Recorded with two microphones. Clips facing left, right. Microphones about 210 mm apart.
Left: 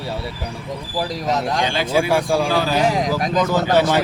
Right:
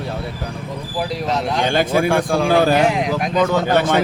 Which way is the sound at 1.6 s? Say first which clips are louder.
Right 5 dB; 50° right (ahead or behind).